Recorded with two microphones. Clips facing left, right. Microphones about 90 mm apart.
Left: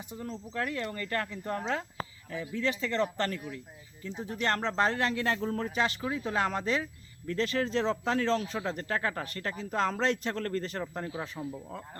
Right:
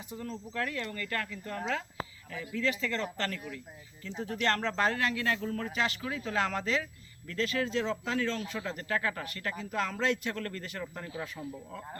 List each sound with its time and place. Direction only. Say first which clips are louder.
0.2 s speech: left 1 dB; 20° left (ahead or behind)
11.0 s speech: left 3 dB; 25° left (ahead or behind)